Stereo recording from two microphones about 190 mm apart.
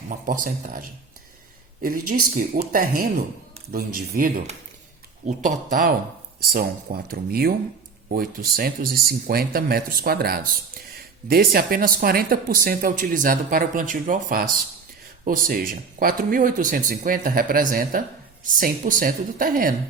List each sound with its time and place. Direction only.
0.1 s speech: 45° right (ahead or behind)